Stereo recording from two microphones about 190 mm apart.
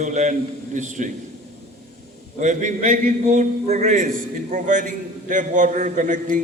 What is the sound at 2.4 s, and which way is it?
A man's voice, 40° right (ahead or behind).